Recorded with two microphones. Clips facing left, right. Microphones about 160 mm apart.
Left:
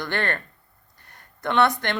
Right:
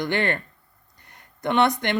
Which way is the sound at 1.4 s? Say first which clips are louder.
Even; 20° right (ahead or behind).